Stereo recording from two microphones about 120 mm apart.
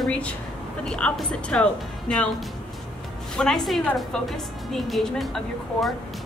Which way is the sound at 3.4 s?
5° left (ahead or behind).